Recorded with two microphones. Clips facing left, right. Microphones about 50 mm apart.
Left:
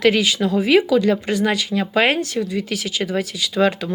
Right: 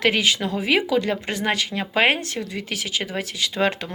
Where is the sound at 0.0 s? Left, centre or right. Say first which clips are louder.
Left 4 dB; right.